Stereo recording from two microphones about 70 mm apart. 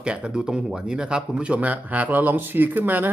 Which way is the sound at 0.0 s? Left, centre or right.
Centre.